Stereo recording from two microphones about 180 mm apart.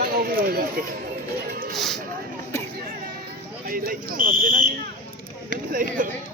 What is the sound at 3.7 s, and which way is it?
Speech, 55° right (ahead or behind).